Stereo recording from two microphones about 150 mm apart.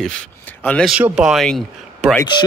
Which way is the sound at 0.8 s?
5° right (ahead or behind).